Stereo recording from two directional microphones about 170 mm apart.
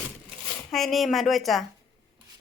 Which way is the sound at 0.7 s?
Centre (ahead or behind).